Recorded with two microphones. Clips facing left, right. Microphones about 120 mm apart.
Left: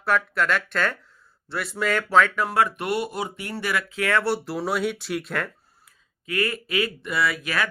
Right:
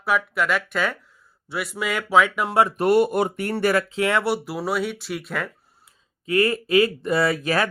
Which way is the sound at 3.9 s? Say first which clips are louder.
Right 2 dB; 20° right (ahead or behind).